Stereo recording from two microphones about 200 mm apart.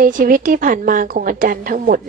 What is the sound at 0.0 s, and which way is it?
Speech, 45° right (ahead or behind).